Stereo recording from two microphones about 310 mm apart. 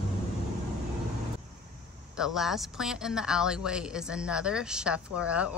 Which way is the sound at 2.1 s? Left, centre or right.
Centre.